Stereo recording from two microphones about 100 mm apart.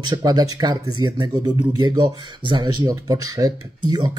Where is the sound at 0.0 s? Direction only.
45° right (ahead or behind).